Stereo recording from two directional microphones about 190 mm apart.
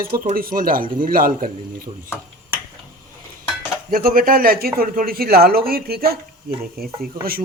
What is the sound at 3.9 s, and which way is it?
Speech, 50° right (ahead or behind).